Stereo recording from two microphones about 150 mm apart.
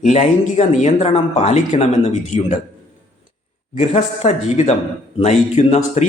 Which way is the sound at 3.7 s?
45° left (ahead or behind).